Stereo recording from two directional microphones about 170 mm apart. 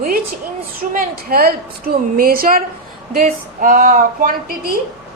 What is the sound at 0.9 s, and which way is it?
A woman's voice, 60° right (ahead or behind).